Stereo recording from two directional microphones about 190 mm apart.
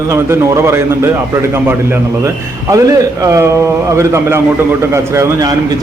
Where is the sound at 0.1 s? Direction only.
15° right (ahead or behind).